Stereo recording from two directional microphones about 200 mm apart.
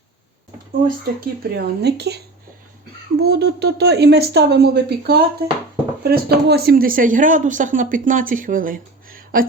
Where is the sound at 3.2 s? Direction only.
55° right (ahead or behind).